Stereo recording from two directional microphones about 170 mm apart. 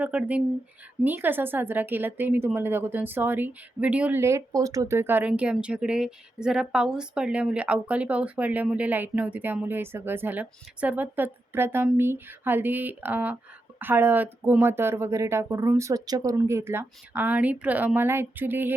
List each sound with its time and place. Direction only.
0.0 s a woman's voice: 10° right (ahead or behind)